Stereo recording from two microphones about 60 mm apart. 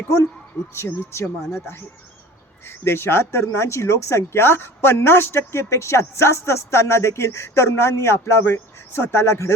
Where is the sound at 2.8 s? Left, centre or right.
Left.